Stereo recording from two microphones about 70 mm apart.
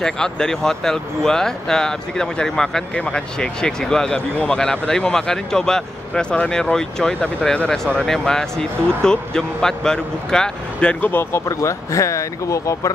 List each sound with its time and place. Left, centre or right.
0.0 s speech: centre
11.1 s speech: left
11.4 s speech: left